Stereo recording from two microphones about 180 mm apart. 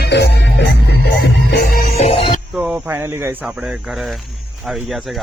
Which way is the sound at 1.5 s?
60° left (ahead or behind).